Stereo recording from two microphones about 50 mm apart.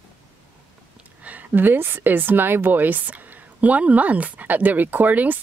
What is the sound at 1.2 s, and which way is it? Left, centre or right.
Speech, right.